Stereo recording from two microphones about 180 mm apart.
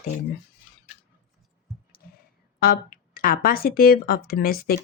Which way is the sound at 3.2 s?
55° left (ahead or behind).